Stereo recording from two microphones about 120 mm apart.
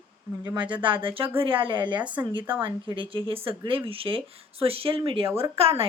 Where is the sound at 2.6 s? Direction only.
40° right (ahead or behind).